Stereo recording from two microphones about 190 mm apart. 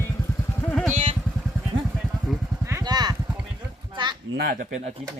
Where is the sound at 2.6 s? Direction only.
15° right (ahead or behind).